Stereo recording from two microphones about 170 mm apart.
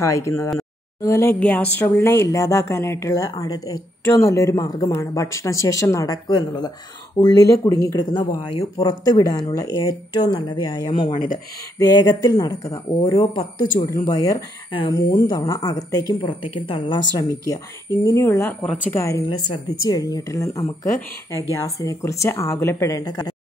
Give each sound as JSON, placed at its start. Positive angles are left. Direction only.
{"t": 0.0, "sound": "speech", "side_deg": 15}
{"t": 11.1, "sound": "speech", "side_deg": 55}
{"t": 11.8, "sound": "speech", "side_deg": 25}
{"t": 14.7, "sound": "speech", "side_deg": 30}
{"t": 15.0, "sound": "speech", "side_deg": 20}
{"t": 17.2, "sound": "speech", "side_deg": 20}